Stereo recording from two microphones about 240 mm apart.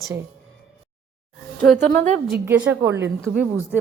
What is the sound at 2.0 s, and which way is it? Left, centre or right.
Speech, right.